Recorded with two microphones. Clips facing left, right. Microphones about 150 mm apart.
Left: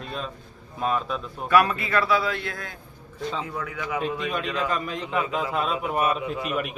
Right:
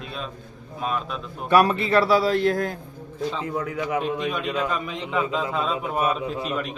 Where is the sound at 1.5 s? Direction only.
30° right (ahead or behind).